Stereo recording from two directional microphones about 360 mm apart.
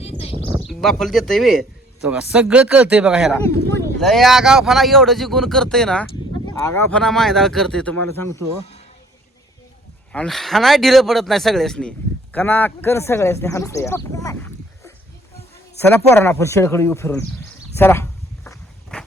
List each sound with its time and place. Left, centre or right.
0.0 s bird: centre
0.6 s speech: centre
10.1 s speech: centre
15.9 s speech: centre
17.7 s walk: centre